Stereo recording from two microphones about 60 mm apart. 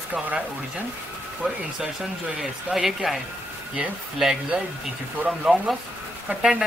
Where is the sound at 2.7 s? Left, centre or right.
Centre.